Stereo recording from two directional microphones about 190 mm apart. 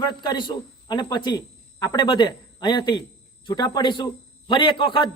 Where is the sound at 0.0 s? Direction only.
20° left (ahead or behind).